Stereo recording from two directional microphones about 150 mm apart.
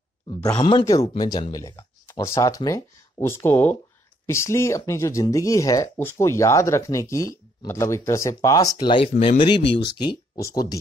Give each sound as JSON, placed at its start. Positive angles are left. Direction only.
{"t": 0.6, "sound": "speech", "side_deg": 30}
{"t": 0.8, "sound": "speech", "side_deg": 20}